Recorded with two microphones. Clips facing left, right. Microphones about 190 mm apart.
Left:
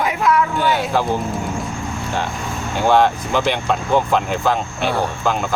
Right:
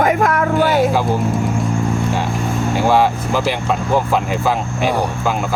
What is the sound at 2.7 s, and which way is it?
Speech, 5° right (ahead or behind).